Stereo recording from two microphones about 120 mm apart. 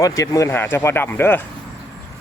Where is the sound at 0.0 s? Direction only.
25° left (ahead or behind).